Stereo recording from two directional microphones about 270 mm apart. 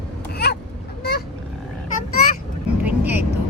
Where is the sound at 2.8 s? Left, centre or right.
Centre.